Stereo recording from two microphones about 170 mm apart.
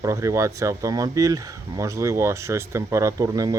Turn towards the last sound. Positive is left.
turn(degrees=-20)  # may be behind; listen again after turning